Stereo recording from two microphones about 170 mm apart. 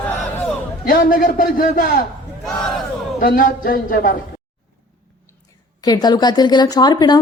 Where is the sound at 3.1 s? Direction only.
55° left (ahead or behind).